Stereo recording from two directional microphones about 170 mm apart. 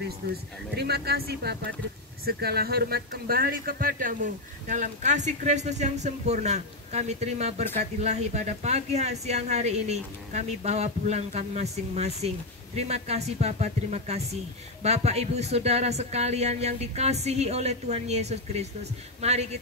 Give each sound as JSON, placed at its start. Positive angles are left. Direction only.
{"t": 0.2, "sound": "speech", "side_deg": -90}
{"t": 0.7, "sound": "speech", "side_deg": -70}